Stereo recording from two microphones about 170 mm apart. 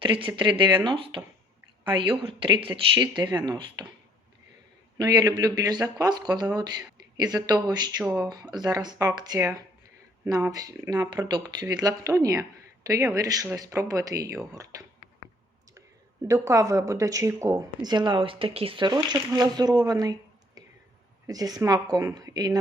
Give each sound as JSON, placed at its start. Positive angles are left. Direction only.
{"t": 0.0, "sound": "speech", "side_deg": -30}
{"t": 4.9, "sound": "speech", "side_deg": -25}
{"t": 16.2, "sound": "speech", "side_deg": -20}
{"t": 20.6, "sound": "whispering", "side_deg": -20}
{"t": 21.2, "sound": "speech", "side_deg": -20}